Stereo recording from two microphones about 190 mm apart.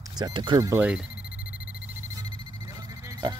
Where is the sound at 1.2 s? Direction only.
50° left (ahead or behind).